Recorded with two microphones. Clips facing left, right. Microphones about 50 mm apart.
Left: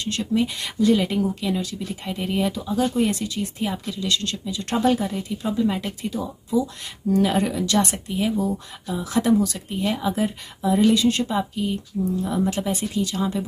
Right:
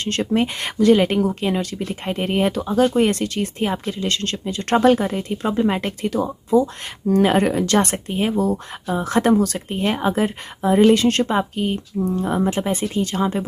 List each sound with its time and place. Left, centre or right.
0.0 s speech: right
3.9 s speech: right
8.5 s speech: right
12.4 s speech: right